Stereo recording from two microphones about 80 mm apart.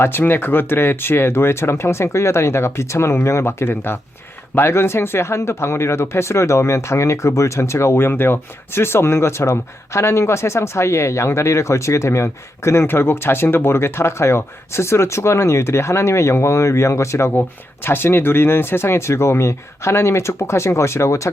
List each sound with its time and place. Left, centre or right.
0.0 s speech: left